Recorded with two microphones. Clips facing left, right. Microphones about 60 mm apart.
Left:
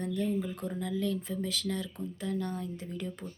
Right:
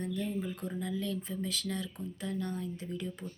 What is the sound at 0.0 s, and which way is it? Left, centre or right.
A woman's voice, left.